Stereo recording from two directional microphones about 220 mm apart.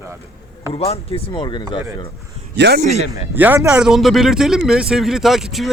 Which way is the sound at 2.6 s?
50° right (ahead or behind).